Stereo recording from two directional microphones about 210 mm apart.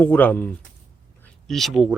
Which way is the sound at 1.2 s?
Centre (ahead or behind).